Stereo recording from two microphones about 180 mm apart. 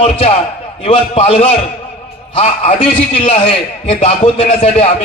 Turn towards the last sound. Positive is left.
turn(degrees=35)  # may be behind; listen again after turning